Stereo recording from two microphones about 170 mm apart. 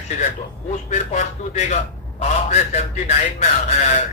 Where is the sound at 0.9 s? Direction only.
45° left (ahead or behind).